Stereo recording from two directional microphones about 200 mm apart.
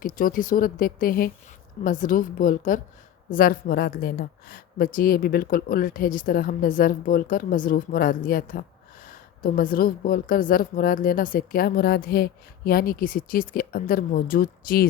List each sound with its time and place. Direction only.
0.0 s speech: 45° left (ahead or behind)